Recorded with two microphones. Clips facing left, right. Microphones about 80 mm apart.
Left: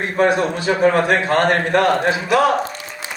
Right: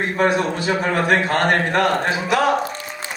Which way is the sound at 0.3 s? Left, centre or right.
Left.